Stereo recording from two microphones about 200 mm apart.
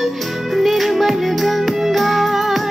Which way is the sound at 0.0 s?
Centre (ahead or behind).